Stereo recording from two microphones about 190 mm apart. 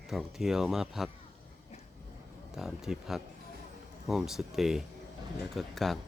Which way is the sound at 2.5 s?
Centre (ahead or behind).